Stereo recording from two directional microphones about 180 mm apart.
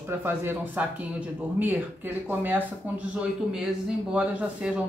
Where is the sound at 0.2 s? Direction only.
10° right (ahead or behind).